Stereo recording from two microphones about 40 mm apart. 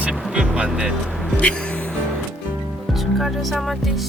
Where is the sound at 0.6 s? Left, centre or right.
Centre.